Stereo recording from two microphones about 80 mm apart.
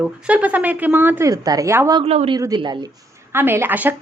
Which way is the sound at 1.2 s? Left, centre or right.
Right.